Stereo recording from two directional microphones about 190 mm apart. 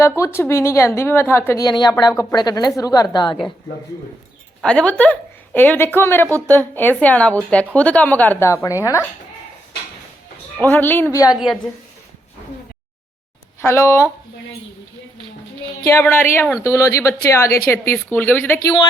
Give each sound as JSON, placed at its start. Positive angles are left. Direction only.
{"t": 0.2, "sound": "a woman's voice", "side_deg": 15}
{"t": 4.6, "sound": "a woman's voice", "side_deg": 5}
{"t": 10.6, "sound": "a woman's voice", "side_deg": 10}
{"t": 11.3, "sound": "a woman's voice", "side_deg": 0}
{"t": 13.6, "sound": "a woman's voice", "side_deg": 15}
{"t": 15.9, "sound": "a woman's voice", "side_deg": 10}